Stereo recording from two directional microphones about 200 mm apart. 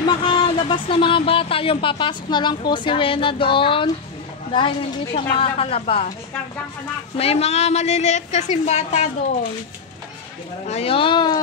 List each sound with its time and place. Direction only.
0.2 s speech: 25° left (ahead or behind)
7.2 s a woman's voice: 30° left (ahead or behind)
10.7 s speech: 30° left (ahead or behind)